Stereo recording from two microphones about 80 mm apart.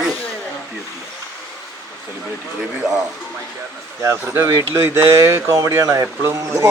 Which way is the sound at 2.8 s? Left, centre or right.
Centre.